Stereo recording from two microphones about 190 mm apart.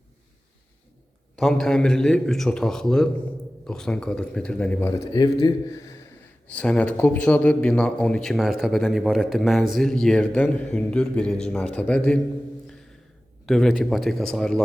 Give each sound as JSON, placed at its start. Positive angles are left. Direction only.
{"t": 1.4, "sound": "a man's voice", "side_deg": 0}
{"t": 13.4, "sound": "a man's voice", "side_deg": 0}